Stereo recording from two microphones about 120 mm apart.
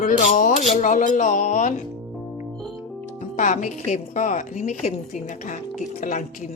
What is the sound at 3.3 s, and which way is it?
A woman's voice, 90° left.